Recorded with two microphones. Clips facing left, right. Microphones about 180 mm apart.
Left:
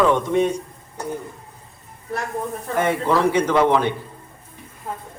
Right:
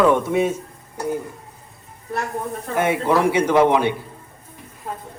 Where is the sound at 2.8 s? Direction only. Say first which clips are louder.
Right 1 dB; 10° right (ahead or behind).